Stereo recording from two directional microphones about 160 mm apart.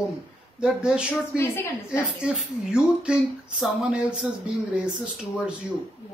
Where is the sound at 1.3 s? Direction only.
15° left (ahead or behind).